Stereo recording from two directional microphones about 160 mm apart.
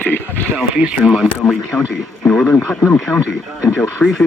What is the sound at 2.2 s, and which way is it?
Speech, 20° left (ahead or behind).